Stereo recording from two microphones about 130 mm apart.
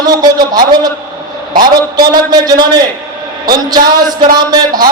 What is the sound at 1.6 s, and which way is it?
A man's voice, 30° right (ahead or behind).